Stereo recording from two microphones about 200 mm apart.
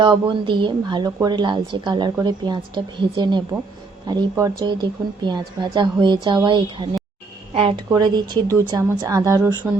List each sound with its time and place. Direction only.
0.0 s a woman's voice: 25° right (ahead or behind)